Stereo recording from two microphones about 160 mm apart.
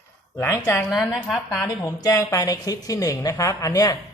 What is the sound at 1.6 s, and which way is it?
Speech, 20° left (ahead or behind).